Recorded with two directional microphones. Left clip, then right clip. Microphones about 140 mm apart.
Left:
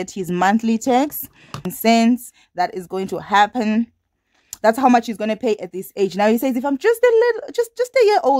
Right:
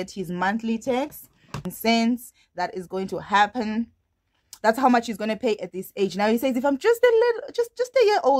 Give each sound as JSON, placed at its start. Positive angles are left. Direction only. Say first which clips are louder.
{"t": 0.0, "sound": "speech", "louder": "left 7 dB", "side_deg": 35}
{"t": 1.7, "sound": "speech", "louder": "left 7 dB", "side_deg": 30}